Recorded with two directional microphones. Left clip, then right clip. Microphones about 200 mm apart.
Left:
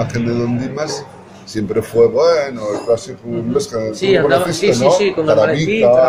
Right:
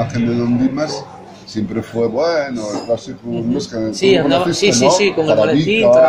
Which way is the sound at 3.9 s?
5° right (ahead or behind).